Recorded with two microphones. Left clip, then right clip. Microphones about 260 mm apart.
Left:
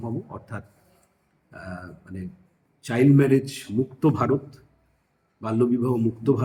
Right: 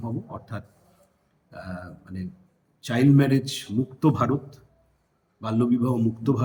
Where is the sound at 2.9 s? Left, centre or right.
Centre.